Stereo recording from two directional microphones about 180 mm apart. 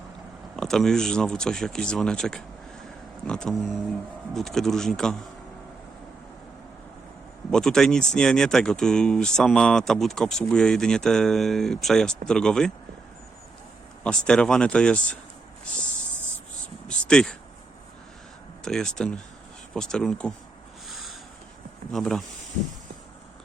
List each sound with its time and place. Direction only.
0.5 s speech: centre (ahead or behind)
7.5 s speech: 5° left (ahead or behind)
14.0 s speech: 5° left (ahead or behind)
16.9 s a sound: 5° left (ahead or behind)
18.6 s speech: 5° left (ahead or behind)
20.9 s a sound: centre (ahead or behind)
21.9 s speech: centre (ahead or behind)